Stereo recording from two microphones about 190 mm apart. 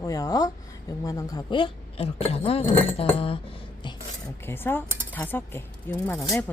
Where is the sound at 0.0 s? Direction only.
20° left (ahead or behind).